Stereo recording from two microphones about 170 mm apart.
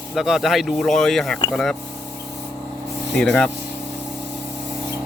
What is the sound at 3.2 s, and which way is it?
Speech, 5° left (ahead or behind).